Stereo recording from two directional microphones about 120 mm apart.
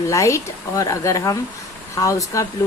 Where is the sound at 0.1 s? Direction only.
25° left (ahead or behind).